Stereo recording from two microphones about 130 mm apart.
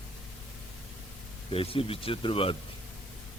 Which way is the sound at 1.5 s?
45° left (ahead or behind).